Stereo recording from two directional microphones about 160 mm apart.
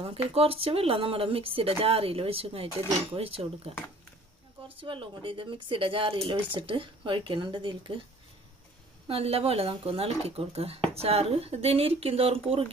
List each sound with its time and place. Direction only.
0.0 s speech: 35° right (ahead or behind)
4.7 s speech: 30° right (ahead or behind)
9.0 s speech: 40° right (ahead or behind)